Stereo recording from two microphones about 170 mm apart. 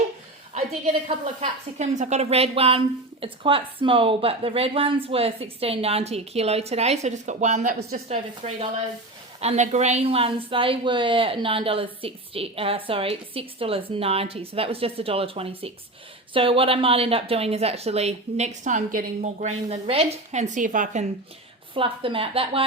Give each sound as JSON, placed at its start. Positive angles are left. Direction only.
{"t": 1.0, "sound": "a woman's voice", "side_deg": -40}
{"t": 8.0, "sound": "a woman's voice", "side_deg": -40}
{"t": 21.8, "sound": "a woman's voice", "side_deg": -30}